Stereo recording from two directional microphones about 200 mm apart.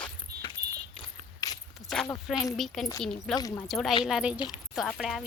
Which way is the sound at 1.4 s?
20° left (ahead or behind).